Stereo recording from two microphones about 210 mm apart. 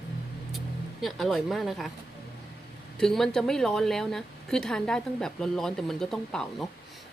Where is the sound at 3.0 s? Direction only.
Centre (ahead or behind).